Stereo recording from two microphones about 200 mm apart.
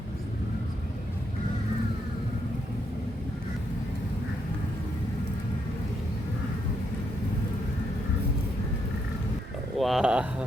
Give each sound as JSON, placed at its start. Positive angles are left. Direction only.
{"t": 9.7, "sound": "speech", "side_deg": 0}